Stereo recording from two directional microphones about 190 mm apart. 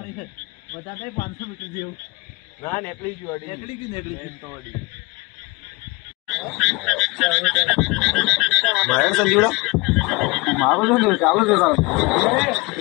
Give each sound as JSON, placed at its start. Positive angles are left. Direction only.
{"t": 1.1, "sound": "speech", "side_deg": 50}
{"t": 2.6, "sound": "a man's voice", "side_deg": 10}
{"t": 3.4, "sound": "a man's voice", "side_deg": 30}
{"t": 6.2, "sound": "croak", "side_deg": 0}